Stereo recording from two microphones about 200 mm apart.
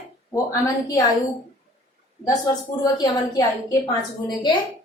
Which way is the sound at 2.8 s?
15° left (ahead or behind).